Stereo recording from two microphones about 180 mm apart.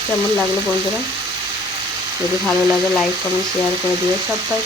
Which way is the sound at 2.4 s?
Centre (ahead or behind).